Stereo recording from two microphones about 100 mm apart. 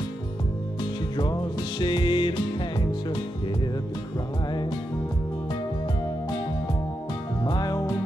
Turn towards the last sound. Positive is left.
turn(degrees=40)  # may be behind; listen again after turning